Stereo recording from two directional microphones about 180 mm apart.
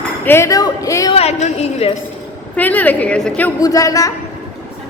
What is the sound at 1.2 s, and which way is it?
Speech, 35° left (ahead or behind).